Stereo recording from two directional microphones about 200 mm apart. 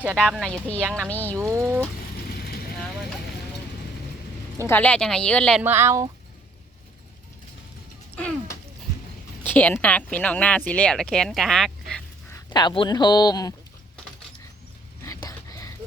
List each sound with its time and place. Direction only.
0.0 s speech: 5° right (ahead or behind)
0.8 s speech: 10° right (ahead or behind)
1.0 s speech: 10° left (ahead or behind)
1.4 s speech: 15° right (ahead or behind)
2.1 s vehicle: 50° left (ahead or behind)
4.6 s speech: 10° left (ahead or behind)
5.6 s speech: 10° right (ahead or behind)
8.1 s music: 5° left (ahead or behind)
9.4 s speech: 10° left (ahead or behind)
12.3 s a man's voice: 20° left (ahead or behind)
15.0 s a sound: 15° left (ahead or behind)